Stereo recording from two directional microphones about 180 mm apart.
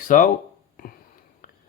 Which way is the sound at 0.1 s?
50° left (ahead or behind).